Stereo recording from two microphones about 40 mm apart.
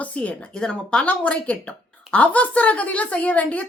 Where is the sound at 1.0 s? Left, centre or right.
Left.